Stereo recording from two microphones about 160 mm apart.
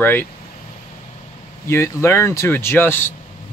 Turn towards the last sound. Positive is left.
turn(degrees=15)  # may be behind; listen again after turning